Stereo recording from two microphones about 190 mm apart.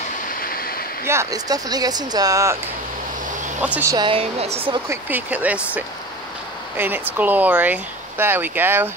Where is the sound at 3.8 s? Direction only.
20° right (ahead or behind).